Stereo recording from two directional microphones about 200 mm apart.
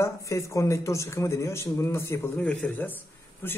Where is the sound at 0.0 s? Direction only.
15° left (ahead or behind).